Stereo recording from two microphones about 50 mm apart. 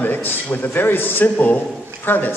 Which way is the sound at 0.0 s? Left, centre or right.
Left.